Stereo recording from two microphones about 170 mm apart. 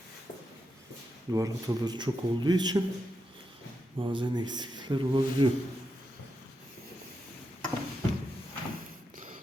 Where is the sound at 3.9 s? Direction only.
30° right (ahead or behind).